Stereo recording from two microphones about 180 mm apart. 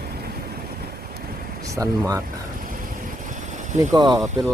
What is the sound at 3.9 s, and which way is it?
Speech, 20° right (ahead or behind).